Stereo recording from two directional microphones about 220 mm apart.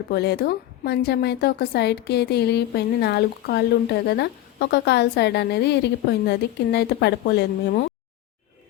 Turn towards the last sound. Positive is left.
turn(degrees=45)  # may be behind; listen again after turning